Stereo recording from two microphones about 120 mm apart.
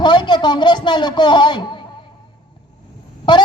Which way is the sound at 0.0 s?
40° left (ahead or behind).